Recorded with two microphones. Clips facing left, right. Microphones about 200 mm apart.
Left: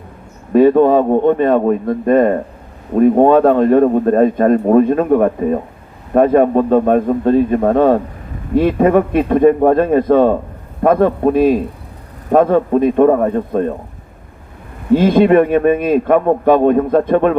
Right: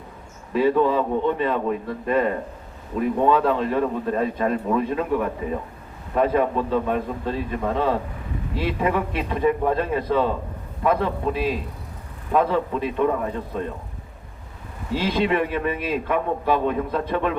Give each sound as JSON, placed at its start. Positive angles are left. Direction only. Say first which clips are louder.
{"t": 0.5, "sound": "a man's voice", "louder": "left 10 dB", "side_deg": 50}
{"t": 14.8, "sound": "a man's voice", "louder": "left 12 dB", "side_deg": 50}